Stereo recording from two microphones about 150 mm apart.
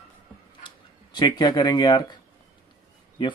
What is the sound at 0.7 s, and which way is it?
Speech, 30° left (ahead or behind).